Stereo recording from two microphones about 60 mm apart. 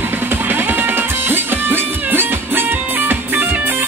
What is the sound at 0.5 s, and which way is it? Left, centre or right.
Music, right.